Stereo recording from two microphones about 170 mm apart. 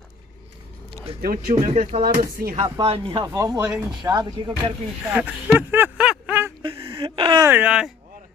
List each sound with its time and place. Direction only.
1.1 s speech: 35° right (ahead or behind); by 2.6 s 55° right (ahead or behind)
2.8 s speech: 30° right (ahead or behind)
3.3 s speech: 20° right (ahead or behind)
3.6 s speech: 5° right (ahead or behind)
4.0 s speech: 25° right (ahead or behind)
5.1 s a sound: 10° right (ahead or behind)
6.6 s a sound: 30° right (ahead or behind)
7.4 s speech: 10° right (ahead or behind)